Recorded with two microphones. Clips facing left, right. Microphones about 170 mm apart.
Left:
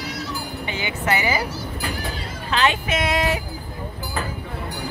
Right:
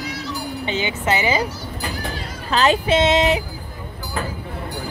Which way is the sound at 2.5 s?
35° right (ahead or behind).